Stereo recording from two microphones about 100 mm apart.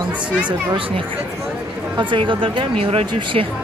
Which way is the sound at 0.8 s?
65° right (ahead or behind).